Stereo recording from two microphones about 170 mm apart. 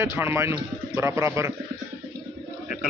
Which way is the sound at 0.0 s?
15° right (ahead or behind).